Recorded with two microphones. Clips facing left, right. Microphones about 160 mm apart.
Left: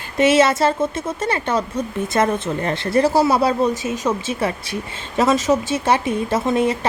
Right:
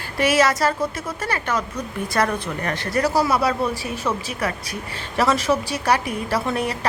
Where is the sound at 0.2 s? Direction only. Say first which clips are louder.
Left 4 dB; 25° left (ahead or behind).